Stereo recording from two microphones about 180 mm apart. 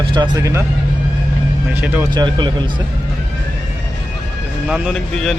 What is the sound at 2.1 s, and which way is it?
Speech, 25° right (ahead or behind).